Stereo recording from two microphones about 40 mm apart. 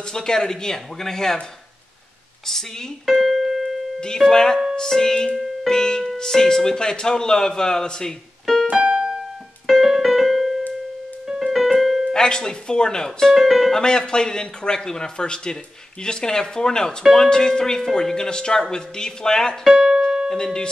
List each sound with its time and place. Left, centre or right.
0.1 s speech: centre
2.4 s speech: centre
3.1 s keyboard: centre
4.0 s speech: centre
9.7 s keyboard: centre
11.2 s piano: centre
12.1 s speech: centre
13.3 s speech: centre
13.7 s a man's voice: centre
19.6 s music: centre
20.3 s speech: centre